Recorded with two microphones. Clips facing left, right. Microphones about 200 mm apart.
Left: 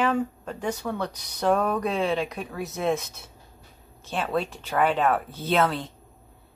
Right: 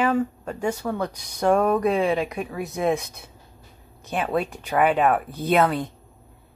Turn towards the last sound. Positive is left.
turn(degrees=-15)  # may be behind; listen again after turning